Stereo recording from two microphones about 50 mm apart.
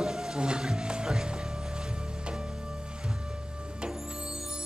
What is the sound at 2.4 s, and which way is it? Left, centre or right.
Music, centre.